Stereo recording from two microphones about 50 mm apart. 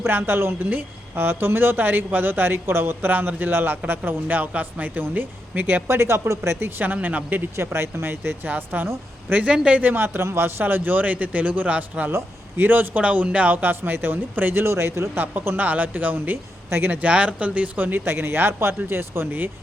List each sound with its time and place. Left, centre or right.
0.0 s speech: right
5.9 s speech: right
7.5 s speech: right
8.4 s speech: right
9.5 s speech: centre
9.8 s speech: right
10.2 s speech: right
10.6 s speech: right
13.0 s speech: right
14.6 s speech: right
15.5 s speech: right
16.6 s speech: right
16.9 s speech: right
18.0 s speech: right